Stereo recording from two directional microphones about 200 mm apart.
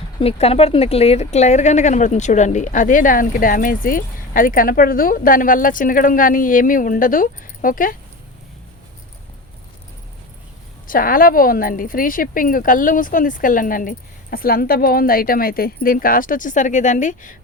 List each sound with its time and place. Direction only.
0.2 s a woman's voice: 30° left (ahead or behind)
10.8 s a woman's voice: 45° left (ahead or behind)